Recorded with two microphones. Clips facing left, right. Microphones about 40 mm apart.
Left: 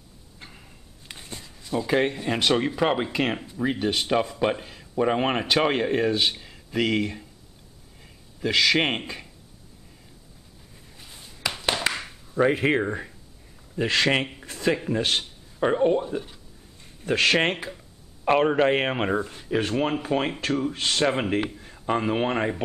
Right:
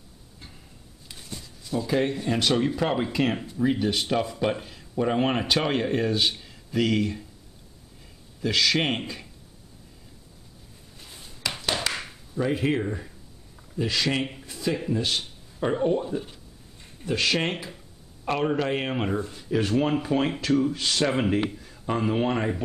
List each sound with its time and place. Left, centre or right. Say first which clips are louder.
0.4 s a sound: left 3 dB; left
3.8 s speech: left 2 dB; centre
11.9 s chop: left 3 dB; left
12.4 s speech: left 4 dB; left
14.4 s a sound: left 4 dB; left
14.9 s speech: left 2 dB; left
15.6 s speech: left 3 dB; left
17.0 s speech: left 4 dB; left
21.0 s speech: even; centre